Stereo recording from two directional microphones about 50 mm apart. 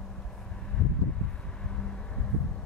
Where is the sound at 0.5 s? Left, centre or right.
Centre.